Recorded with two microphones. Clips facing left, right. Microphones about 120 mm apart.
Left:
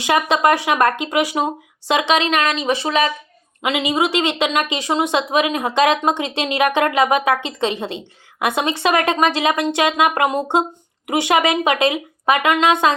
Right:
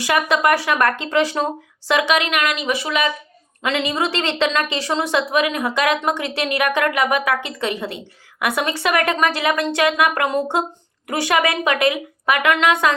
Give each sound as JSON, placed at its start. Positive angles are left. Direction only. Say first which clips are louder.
{"t": 0.0, "sound": "speech", "louder": "left 2 dB", "side_deg": 20}
{"t": 1.9, "sound": "speech", "louder": "left 1 dB", "side_deg": 25}
{"t": 3.6, "sound": "speech", "louder": "left 2 dB", "side_deg": 15}